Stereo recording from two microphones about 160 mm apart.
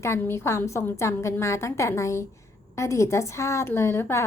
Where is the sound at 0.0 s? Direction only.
15° left (ahead or behind).